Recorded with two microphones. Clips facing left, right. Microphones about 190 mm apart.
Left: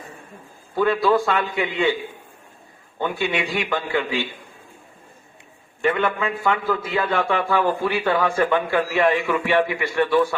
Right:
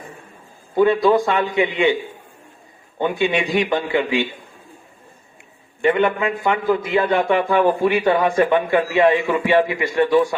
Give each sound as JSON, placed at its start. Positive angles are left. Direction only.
{"t": 0.8, "sound": "a man's voice", "side_deg": -15}
{"t": 3.0, "sound": "a man's voice", "side_deg": -15}
{"t": 5.8, "sound": "a man's voice", "side_deg": -20}